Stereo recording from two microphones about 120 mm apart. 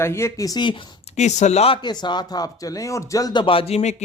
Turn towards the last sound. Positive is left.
turn(degrees=70)  # may be behind; listen again after turning